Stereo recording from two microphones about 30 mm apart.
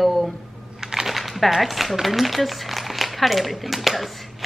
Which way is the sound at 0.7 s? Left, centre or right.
Centre.